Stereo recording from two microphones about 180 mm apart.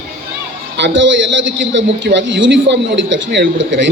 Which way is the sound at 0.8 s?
90° right.